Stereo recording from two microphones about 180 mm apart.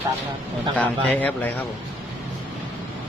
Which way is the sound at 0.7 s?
10° left (ahead or behind).